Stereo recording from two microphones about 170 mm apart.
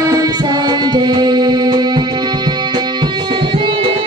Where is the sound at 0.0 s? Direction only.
20° right (ahead or behind).